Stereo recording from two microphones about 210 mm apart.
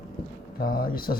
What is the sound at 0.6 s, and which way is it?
Speech, 45° left (ahead or behind).